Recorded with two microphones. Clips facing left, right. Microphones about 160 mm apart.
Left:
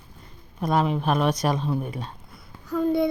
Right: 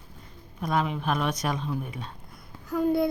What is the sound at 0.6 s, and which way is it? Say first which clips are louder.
Speech: left 4 dB; 35° left (ahead or behind).